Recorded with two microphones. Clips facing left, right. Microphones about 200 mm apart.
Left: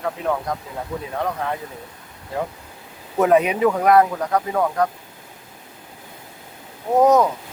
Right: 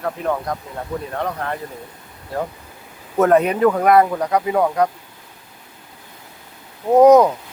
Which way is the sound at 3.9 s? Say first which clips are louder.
Right 1 dB; 10° right (ahead or behind).